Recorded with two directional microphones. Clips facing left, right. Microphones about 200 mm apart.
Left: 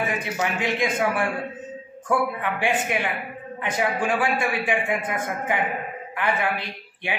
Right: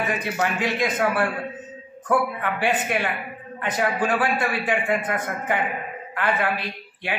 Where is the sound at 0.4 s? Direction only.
20° left (ahead or behind).